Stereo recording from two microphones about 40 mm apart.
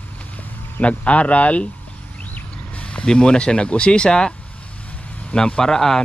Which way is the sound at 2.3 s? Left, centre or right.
Left.